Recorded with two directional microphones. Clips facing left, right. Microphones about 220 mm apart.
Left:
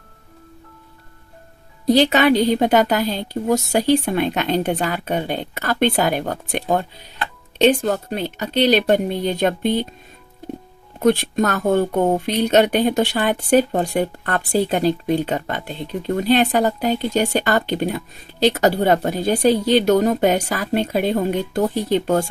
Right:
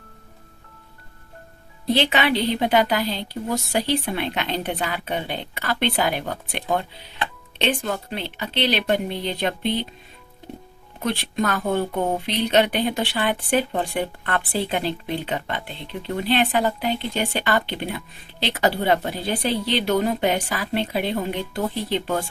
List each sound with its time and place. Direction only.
1.9 s speech: 40° left (ahead or behind)
11.0 s speech: 45° left (ahead or behind)